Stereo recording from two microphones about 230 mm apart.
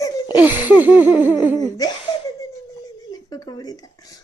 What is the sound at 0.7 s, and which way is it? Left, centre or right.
Laughter, centre.